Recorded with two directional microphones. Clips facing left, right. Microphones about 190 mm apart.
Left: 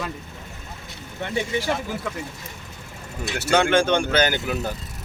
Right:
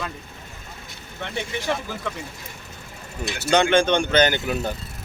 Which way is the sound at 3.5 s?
5° left (ahead or behind).